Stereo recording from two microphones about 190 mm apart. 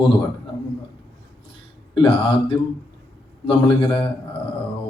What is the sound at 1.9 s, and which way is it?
Speech, 25° left (ahead or behind).